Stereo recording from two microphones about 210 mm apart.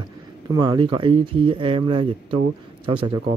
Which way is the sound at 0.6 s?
20° right (ahead or behind).